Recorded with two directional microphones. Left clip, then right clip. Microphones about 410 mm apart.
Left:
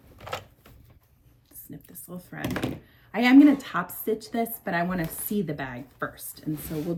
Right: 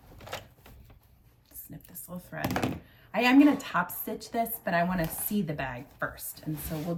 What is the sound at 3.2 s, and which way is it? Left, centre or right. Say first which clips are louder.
A woman's voice: left 5 dB; centre.